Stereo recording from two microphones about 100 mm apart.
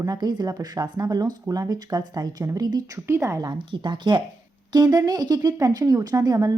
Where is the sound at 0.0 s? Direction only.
40° right (ahead or behind).